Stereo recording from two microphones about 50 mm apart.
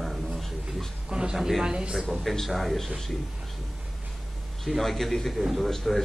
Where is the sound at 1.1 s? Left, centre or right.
Centre.